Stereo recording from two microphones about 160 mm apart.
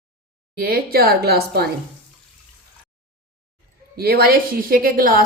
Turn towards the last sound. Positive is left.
turn(degrees=-60)  # may be behind; listen again after turning